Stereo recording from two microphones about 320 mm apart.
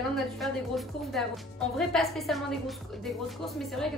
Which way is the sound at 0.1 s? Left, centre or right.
Centre.